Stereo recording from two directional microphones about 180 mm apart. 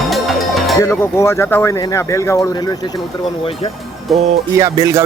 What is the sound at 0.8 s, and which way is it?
Speech, 15° left (ahead or behind).